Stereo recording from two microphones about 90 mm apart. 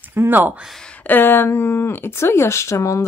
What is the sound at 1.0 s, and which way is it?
Speech, 20° left (ahead or behind).